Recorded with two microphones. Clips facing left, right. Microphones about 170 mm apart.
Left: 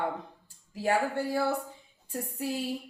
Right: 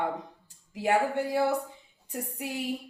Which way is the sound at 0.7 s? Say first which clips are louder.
Right 2 dB; 15° right (ahead or behind).